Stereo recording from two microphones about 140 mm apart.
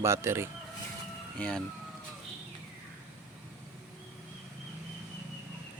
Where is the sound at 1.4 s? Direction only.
5° left (ahead or behind).